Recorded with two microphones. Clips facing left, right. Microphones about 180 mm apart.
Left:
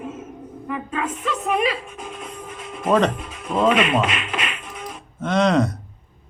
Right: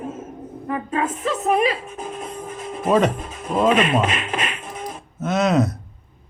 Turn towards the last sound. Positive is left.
turn(degrees=-5)  # may be behind; listen again after turning